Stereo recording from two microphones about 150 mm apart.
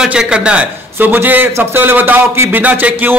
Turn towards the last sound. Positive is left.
turn(degrees=-10)  # may be behind; listen again after turning